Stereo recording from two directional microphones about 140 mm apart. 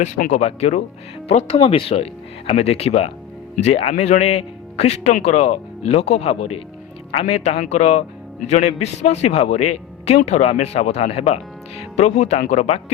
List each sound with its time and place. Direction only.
0.3 s a man's voice: 50° left (ahead or behind)
1.5 s a man's voice: 40° left (ahead or behind)